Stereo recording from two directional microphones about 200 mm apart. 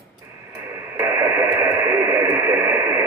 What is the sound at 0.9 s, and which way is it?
Radio, 15° right (ahead or behind).